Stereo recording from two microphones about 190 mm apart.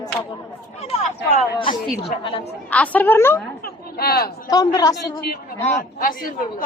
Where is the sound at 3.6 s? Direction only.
50° left (ahead or behind).